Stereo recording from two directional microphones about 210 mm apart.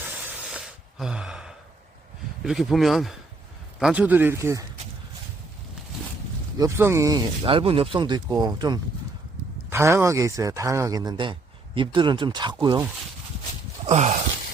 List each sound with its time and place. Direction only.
0.0 s a sound: 5° right (ahead or behind)
2.4 s speech: centre (ahead or behind)
6.6 s speech: 15° right (ahead or behind)
13.8 s speech: 30° right (ahead or behind)